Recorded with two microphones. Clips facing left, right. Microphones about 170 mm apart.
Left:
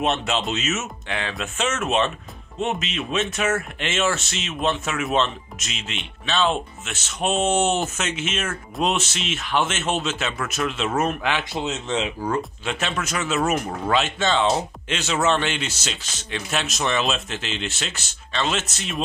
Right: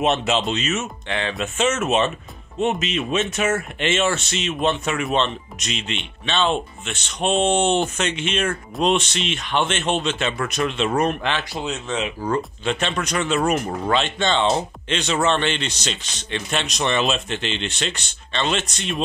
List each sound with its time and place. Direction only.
0.0 s speech: centre (ahead or behind)
11.5 s speech: 20° left (ahead or behind)
12.2 s speech: 5° left (ahead or behind)